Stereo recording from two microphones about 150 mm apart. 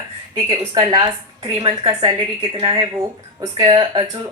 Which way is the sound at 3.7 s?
35° right (ahead or behind).